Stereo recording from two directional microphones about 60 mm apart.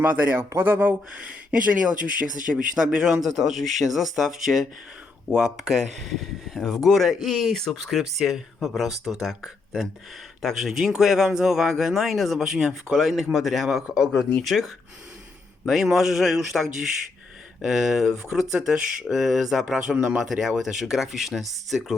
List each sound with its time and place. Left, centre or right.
0.0 s speech: right
2.7 s speech: centre